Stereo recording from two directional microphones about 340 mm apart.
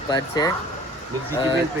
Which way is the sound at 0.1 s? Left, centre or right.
Centre.